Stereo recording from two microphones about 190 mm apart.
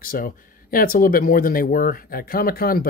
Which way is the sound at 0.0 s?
50° left (ahead or behind).